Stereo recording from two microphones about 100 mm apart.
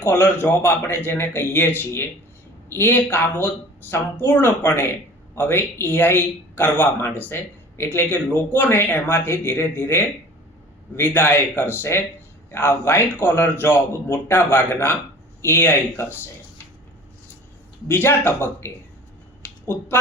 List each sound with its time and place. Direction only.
0.0 s speech: 20° left (ahead or behind)
17.8 s speech: 20° left (ahead or behind)
19.4 s a sound: 25° left (ahead or behind)